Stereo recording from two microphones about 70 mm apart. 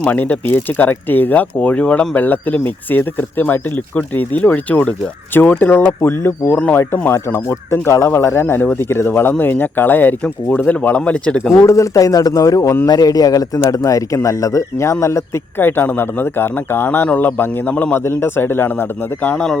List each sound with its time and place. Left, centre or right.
0.0 s speech: left
11.5 s a man's voice: left
15.5 s speech: left